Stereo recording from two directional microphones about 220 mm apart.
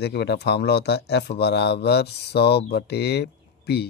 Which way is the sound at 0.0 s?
50° left (ahead or behind).